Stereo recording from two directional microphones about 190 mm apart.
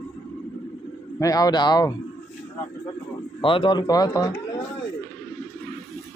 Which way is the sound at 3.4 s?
25° left (ahead or behind).